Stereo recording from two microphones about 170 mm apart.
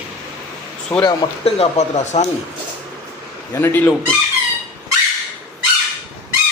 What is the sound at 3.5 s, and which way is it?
Speech, 10° left (ahead or behind).